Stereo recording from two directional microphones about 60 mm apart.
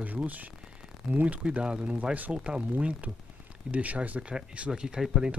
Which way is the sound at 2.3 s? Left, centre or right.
Centre.